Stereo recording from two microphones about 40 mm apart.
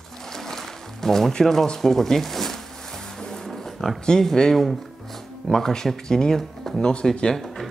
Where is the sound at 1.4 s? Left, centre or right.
Centre.